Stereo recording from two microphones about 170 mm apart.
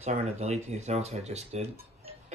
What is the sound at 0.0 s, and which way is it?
Speech, 40° right (ahead or behind).